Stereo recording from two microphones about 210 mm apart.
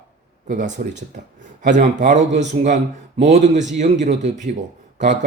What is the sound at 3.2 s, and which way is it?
A man's voice, 35° right (ahead or behind).